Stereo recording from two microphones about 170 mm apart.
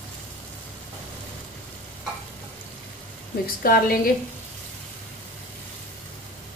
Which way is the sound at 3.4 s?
60° left (ahead or behind).